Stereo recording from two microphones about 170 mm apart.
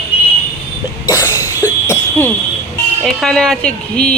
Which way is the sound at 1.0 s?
20° left (ahead or behind).